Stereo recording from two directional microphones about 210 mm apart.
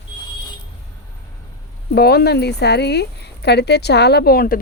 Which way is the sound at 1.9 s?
50° left (ahead or behind).